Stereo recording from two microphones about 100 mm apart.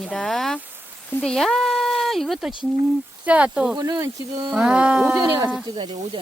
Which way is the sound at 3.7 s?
40° right (ahead or behind).